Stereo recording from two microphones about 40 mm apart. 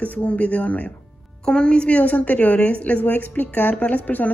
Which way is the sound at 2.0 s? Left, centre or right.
Left.